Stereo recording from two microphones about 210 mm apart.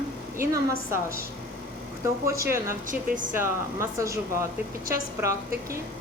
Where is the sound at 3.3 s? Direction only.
15° right (ahead or behind).